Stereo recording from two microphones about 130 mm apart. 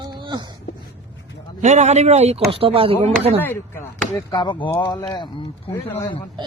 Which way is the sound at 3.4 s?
15° left (ahead or behind).